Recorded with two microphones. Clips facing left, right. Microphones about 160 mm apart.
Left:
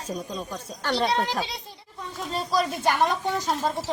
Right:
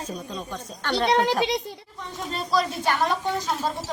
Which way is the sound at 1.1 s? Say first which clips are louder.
Right 5 dB; 60° right (ahead or behind).